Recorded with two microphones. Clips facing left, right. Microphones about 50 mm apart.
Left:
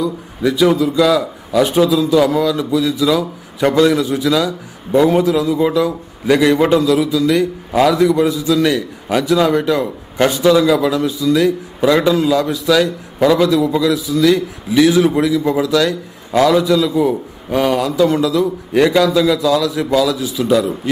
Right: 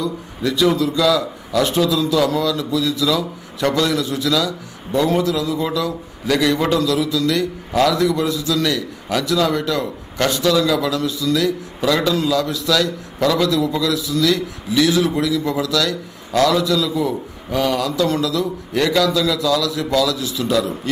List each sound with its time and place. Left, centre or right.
0.0 s a man's voice: centre